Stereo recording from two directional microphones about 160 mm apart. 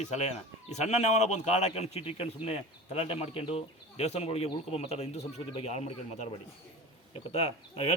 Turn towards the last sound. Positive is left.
turn(degrees=40)  # may be behind; listen again after turning